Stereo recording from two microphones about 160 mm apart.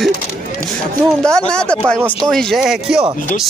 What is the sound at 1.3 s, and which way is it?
Speech, 5° left (ahead or behind).